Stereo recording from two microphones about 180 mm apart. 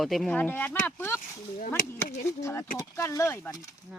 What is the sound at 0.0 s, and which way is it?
Speech, centre (ahead or behind).